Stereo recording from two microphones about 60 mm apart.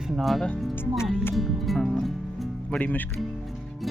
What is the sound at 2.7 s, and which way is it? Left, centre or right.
Speech, left.